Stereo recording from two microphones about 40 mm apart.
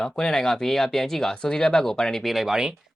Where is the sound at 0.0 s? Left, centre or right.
Centre.